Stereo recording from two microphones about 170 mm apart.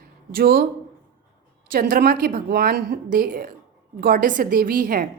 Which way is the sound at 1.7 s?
55° right (ahead or behind).